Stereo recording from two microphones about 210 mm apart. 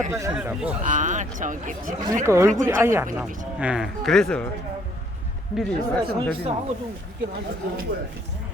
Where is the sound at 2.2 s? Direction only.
15° right (ahead or behind); by 4.5 s 5° left (ahead or behind).